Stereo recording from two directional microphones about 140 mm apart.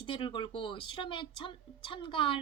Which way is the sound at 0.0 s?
35° left (ahead or behind).